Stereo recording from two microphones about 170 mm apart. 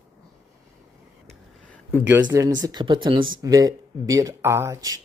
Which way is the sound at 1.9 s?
10° right (ahead or behind).